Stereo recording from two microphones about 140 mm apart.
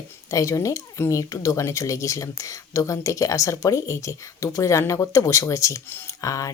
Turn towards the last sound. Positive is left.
turn(degrees=25)  # may be behind; listen again after turning